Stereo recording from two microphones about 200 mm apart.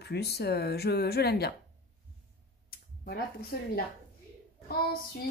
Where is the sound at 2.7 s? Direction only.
50° left (ahead or behind).